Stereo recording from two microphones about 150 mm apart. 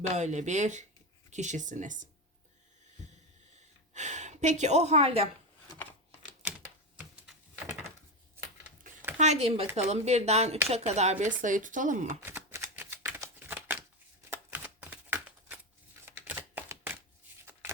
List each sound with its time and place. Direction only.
0.1 s speech: 50° right (ahead or behind)
3.9 s speech: 50° right (ahead or behind)
9.1 s speech: 50° right (ahead or behind)
11.4 s speech: 60° right (ahead or behind)
12.2 s shuffling cards: 15° right (ahead or behind)
14.5 s typing: 10° right (ahead or behind)
16.0 s typewriter: 15° right (ahead or behind)